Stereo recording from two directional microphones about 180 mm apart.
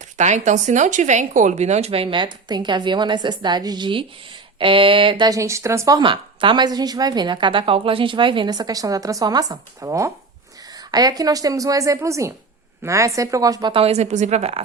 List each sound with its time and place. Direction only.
0.0 s speech: 40° right (ahead or behind)